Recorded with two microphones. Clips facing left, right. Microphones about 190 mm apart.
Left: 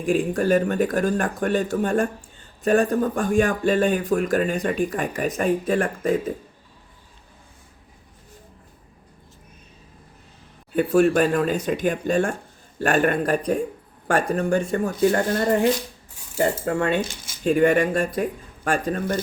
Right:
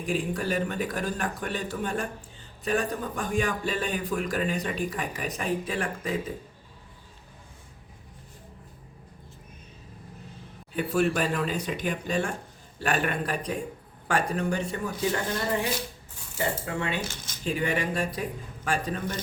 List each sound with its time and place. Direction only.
0.0 s a man's voice: 45° left (ahead or behind)
10.8 s a man's voice: 45° left (ahead or behind)